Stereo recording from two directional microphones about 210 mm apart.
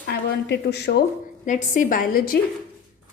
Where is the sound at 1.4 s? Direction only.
35° left (ahead or behind).